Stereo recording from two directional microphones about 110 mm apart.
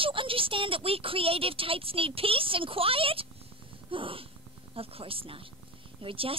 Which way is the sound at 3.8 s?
55° right (ahead or behind).